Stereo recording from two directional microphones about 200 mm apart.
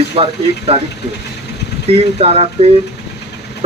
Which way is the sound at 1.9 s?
30° right (ahead or behind).